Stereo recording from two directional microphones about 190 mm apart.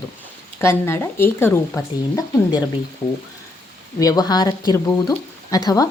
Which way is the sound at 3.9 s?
20° left (ahead or behind).